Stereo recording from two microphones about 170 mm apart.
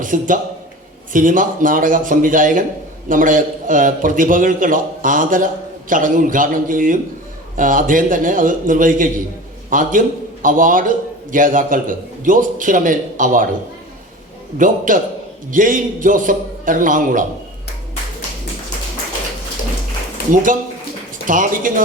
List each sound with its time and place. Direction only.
0.0 s a man's voice: 50° right (ahead or behind)
14.6 s a man's voice: 50° right (ahead or behind)
20.3 s a man's voice: 50° right (ahead or behind)